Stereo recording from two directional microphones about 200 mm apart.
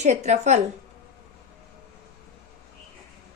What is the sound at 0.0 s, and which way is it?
Speech, 35° right (ahead or behind).